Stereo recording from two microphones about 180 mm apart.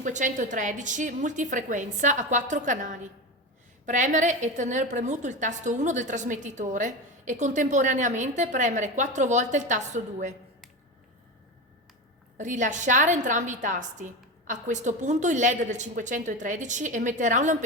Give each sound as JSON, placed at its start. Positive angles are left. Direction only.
{"t": 0.0, "sound": "a woman's voice", "side_deg": -45}
{"t": 12.4, "sound": "a woman's voice", "side_deg": -45}